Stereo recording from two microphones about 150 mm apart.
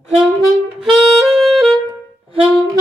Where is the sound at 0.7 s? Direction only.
5° right (ahead or behind).